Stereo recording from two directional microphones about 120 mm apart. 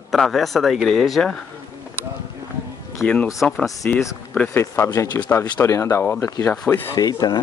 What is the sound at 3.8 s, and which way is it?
Speech, 10° left (ahead or behind).